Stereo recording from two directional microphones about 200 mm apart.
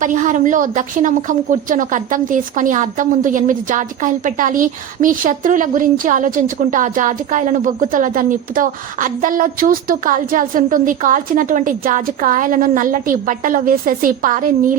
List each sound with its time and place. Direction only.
0.0 s a woman's voice: 40° right (ahead or behind)